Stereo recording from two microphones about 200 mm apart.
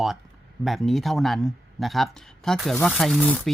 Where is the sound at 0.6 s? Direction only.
Centre (ahead or behind).